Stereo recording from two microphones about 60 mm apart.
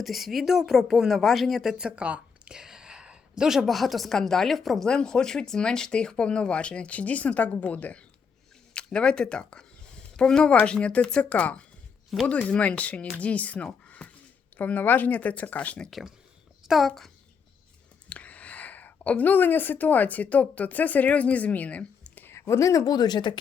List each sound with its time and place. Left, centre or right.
0.0 s speech: centre
1.8 s speech: centre
4.9 s speech: centre
13.8 s a sound: left
14.5 s speech: left
15.9 s speech: centre
18.1 s a woman's voice: left
22.2 s a sound: left